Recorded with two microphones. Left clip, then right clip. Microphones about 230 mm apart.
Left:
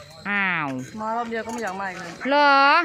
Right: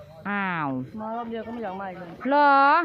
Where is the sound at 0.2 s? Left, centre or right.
Centre.